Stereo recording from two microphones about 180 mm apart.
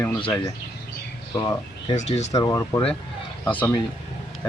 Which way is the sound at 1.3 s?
20° left (ahead or behind).